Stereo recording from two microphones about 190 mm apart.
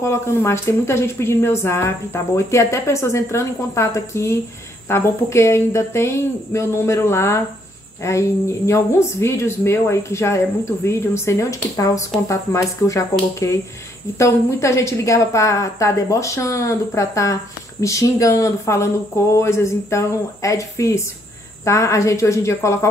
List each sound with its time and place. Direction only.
0.0 s a woman's voice: 15° left (ahead or behind)